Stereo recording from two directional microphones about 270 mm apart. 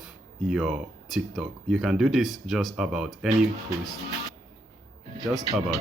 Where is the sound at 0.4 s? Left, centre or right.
Centre.